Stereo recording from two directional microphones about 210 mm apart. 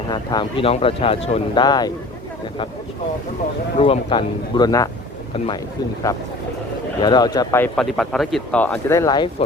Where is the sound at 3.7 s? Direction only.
25° left (ahead or behind).